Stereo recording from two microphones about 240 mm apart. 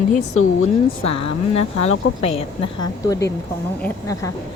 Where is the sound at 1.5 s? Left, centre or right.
Left.